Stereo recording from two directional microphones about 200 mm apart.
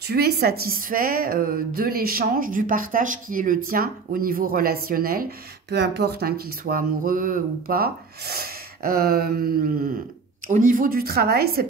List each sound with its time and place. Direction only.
0.0 s speech: 55° right (ahead or behind)